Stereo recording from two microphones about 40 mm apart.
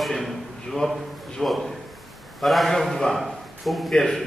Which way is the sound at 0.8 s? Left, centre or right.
Left.